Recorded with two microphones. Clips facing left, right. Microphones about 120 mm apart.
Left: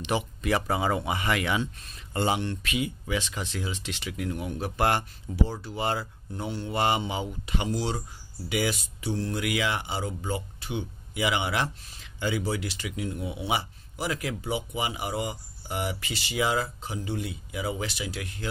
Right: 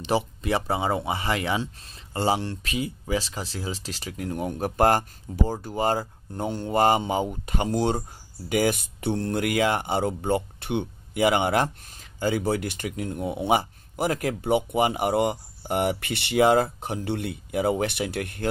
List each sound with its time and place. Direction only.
0.0 s speech: 30° right (ahead or behind); by 18.5 s 55° right (ahead or behind)